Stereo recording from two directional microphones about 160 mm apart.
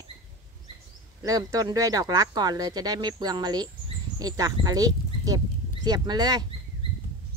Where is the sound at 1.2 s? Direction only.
20° right (ahead or behind).